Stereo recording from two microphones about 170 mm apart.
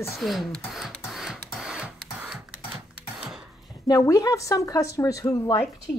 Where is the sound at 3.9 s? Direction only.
20° left (ahead or behind).